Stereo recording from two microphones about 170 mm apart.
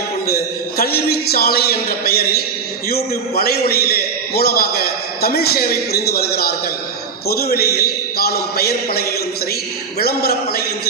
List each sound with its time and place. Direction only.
0.3 s a man's voice: 65° left (ahead or behind)